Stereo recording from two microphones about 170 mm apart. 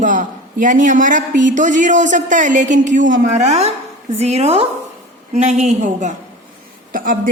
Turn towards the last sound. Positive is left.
turn(degrees=-55)  # may be behind; listen again after turning